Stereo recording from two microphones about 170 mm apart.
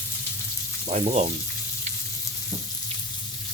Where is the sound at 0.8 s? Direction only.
40° right (ahead or behind).